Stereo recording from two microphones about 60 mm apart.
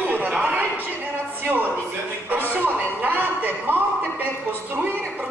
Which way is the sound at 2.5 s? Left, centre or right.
Right.